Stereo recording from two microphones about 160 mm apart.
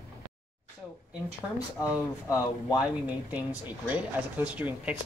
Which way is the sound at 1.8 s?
20° left (ahead or behind).